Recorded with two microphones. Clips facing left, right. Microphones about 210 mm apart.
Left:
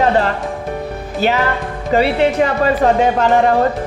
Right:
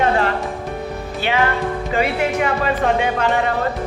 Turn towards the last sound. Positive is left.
turn(degrees=45)  # may be behind; listen again after turning